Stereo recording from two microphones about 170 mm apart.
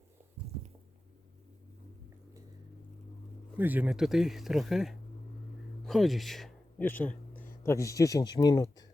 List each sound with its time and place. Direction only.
3.6 s a man's voice: 10° right (ahead or behind); by 8.9 s 20° left (ahead or behind)